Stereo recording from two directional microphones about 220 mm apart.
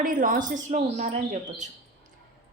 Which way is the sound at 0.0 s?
40° right (ahead or behind).